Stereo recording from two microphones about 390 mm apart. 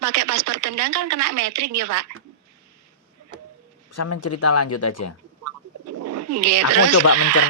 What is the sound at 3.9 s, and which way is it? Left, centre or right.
Speech, left.